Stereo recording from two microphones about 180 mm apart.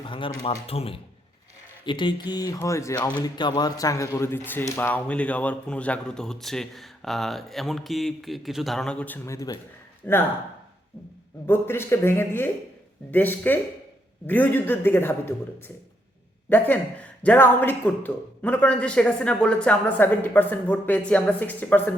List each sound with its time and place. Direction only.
0.1 s speech: 25° left (ahead or behind); by 10.2 s 10° left (ahead or behind)
11.4 s speech: 10° left (ahead or behind)